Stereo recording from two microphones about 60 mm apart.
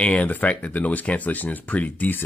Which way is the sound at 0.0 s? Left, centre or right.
Left.